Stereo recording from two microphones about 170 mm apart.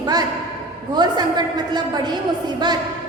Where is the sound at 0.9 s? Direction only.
25° right (ahead or behind).